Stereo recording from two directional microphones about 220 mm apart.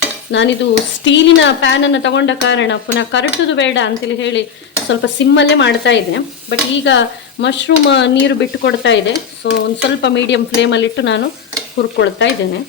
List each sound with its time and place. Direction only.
0.3 s speech: 55° left (ahead or behind)